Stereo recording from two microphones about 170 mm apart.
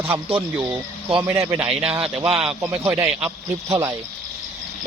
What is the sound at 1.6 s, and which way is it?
Speech, 35° right (ahead or behind).